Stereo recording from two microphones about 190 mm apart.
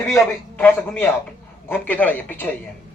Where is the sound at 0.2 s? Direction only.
10° left (ahead or behind).